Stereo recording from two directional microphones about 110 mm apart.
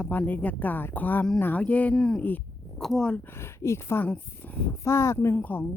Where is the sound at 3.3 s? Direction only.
25° left (ahead or behind).